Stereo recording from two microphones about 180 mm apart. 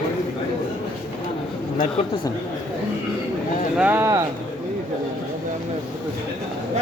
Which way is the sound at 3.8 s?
10° right (ahead or behind).